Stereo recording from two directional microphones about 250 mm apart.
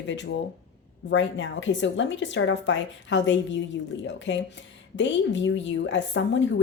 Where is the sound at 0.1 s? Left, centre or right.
Left.